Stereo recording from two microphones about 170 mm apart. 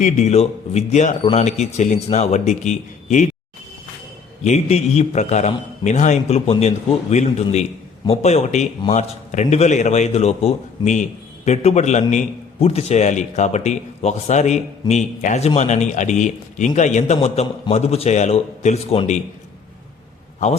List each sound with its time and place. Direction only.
0.0 s a man's voice: 45° left (ahead or behind)
4.4 s a man's voice: 40° left (ahead or behind)
20.4 s a man's voice: 45° left (ahead or behind)